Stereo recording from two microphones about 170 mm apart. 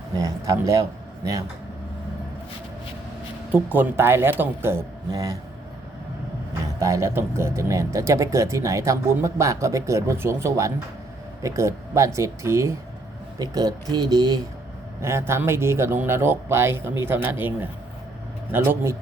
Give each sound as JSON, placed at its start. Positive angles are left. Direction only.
{"t": 0.2, "sound": "a man's voice", "side_deg": -20}
{"t": 3.5, "sound": "speech", "side_deg": -10}
{"t": 6.7, "sound": "a man's voice", "side_deg": -20}